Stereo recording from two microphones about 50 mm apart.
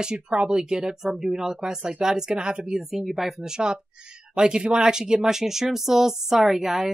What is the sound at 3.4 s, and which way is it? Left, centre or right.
Speech, centre.